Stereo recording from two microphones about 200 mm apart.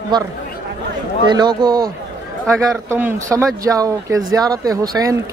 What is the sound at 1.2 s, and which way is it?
Speech, 20° right (ahead or behind).